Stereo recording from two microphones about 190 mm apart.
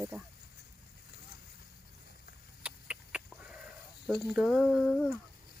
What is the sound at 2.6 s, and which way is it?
Chicken, 5° right (ahead or behind).